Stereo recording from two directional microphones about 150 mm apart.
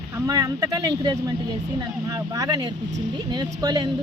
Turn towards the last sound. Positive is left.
turn(degrees=-25)  # may be behind; listen again after turning